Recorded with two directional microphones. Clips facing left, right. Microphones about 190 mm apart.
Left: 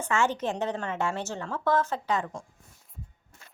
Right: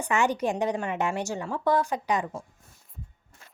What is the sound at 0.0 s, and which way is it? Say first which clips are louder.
Speech: right 2 dB; 15° right (ahead or behind).